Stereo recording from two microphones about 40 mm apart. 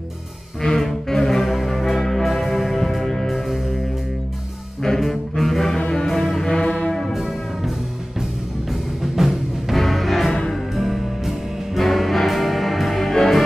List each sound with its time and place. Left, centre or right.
0.6 s music: centre
5.0 s brass instrument: centre
5.8 s music: left
6.0 s music: centre
6.4 s brass instrument: centre
6.7 s brass instrument: left
9.0 s music: centre